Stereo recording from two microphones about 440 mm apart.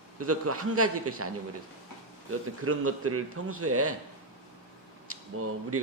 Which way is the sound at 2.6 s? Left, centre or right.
Right.